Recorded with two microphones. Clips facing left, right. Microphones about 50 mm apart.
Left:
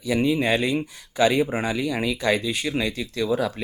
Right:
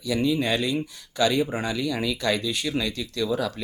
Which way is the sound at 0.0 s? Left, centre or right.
Left.